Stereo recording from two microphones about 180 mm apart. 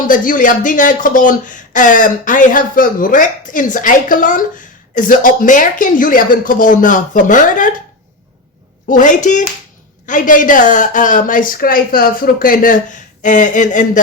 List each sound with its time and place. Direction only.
0.1 s speech: 50° left (ahead or behind)
8.9 s speech: 45° left (ahead or behind)